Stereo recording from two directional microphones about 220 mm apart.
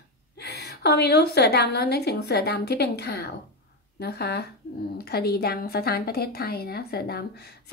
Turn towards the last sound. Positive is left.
turn(degrees=45)  # may be behind; listen again after turning